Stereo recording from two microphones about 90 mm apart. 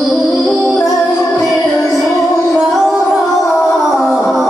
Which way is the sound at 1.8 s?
30° left (ahead or behind).